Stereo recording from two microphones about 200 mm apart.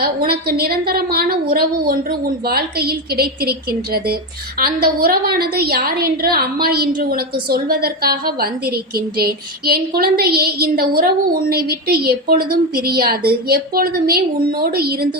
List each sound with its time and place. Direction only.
0.0 s a woman's voice: 50° right (ahead or behind)